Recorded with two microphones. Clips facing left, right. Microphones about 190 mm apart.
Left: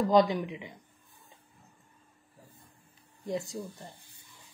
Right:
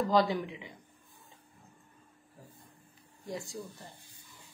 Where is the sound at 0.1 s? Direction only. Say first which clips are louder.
Left 5 dB; 20° left (ahead or behind).